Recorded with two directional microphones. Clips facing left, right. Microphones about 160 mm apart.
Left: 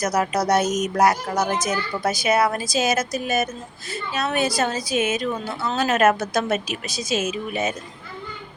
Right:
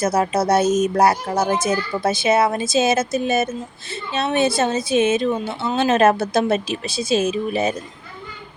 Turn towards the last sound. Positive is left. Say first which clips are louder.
# right 5 dB
turn(degrees=-35)  # may be behind; listen again after turning